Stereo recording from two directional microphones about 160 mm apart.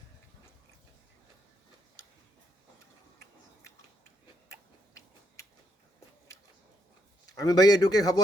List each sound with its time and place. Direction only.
7.3 s a man's voice: 25° left (ahead or behind)